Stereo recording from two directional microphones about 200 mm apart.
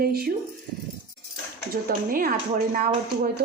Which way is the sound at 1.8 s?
45° right (ahead or behind).